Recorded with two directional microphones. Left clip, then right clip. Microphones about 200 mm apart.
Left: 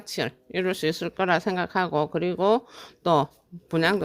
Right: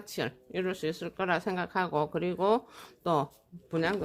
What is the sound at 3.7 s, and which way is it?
Speech, 50° left (ahead or behind).